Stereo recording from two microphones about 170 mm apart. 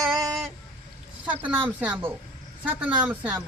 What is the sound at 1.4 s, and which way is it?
Speech, 10° right (ahead or behind).